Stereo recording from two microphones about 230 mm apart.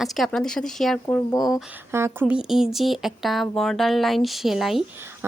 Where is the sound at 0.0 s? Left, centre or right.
Centre.